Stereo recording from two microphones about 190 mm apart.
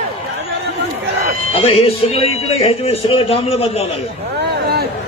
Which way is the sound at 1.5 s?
30° left (ahead or behind).